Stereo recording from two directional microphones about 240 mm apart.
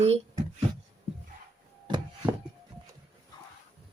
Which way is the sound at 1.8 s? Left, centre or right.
Centre.